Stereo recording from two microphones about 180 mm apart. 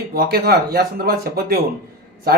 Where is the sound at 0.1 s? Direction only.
55° right (ahead or behind).